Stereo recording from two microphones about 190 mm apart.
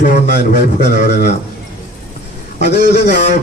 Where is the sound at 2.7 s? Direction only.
65° left (ahead or behind).